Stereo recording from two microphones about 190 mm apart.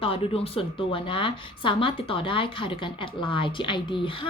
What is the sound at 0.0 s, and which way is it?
A woman's voice, 30° left (ahead or behind).